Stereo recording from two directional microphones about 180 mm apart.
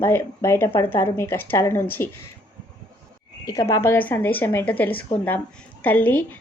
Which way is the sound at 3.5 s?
15° left (ahead or behind).